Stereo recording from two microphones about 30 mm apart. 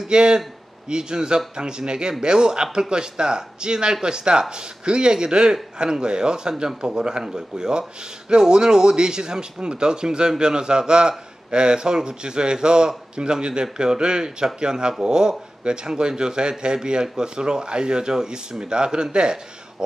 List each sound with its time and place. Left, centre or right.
0.1 s speech: right